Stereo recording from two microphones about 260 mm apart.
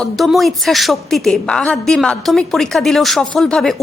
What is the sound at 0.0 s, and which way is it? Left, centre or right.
Speech, centre.